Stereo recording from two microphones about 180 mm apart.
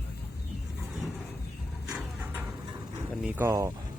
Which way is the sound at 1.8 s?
10° right (ahead or behind).